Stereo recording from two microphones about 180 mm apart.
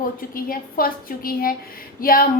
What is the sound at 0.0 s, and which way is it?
A woman's voice, 50° left (ahead or behind).